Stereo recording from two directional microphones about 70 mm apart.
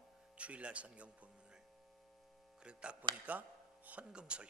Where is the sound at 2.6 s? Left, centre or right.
Centre.